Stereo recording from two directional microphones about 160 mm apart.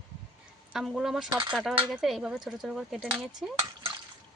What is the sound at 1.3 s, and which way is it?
Speech, 25° right (ahead or behind).